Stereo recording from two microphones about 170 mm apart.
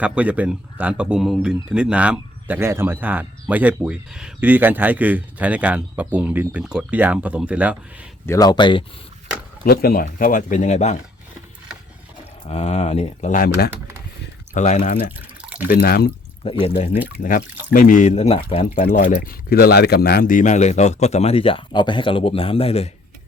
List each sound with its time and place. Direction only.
0.0 s speech: 10° right (ahead or behind)
8.3 s speech: 25° left (ahead or behind)
9.6 s speech: 60° left (ahead or behind); by 10.9 s 45° left (ahead or behind)
12.5 s speech: 40° left (ahead or behind)
13.3 s speech: 55° left (ahead or behind)
14.5 s speech: 45° left (ahead or behind)
15.4 s drip: 5° right (ahead or behind)
15.6 s speech: 60° left (ahead or behind)
16.6 s speech: 40° left (ahead or behind)
17.2 s speech: 60° left (ahead or behind); by 18.4 s 35° left (ahead or behind)
18.6 s speech: 50° left (ahead or behind)